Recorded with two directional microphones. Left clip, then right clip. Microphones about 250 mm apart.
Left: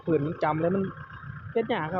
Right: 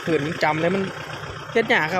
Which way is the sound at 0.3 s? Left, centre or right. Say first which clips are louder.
Right 6 dB; centre.